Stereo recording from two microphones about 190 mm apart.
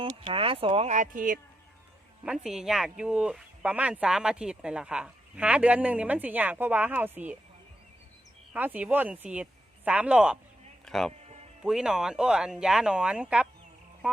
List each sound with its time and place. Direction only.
0.0 s speech: 25° right (ahead or behind); by 1.4 s 45° right (ahead or behind)
2.2 s speech: 5° right (ahead or behind)
8.5 s speech: 10° right (ahead or behind)
14.0 s frog: 5° right (ahead or behind)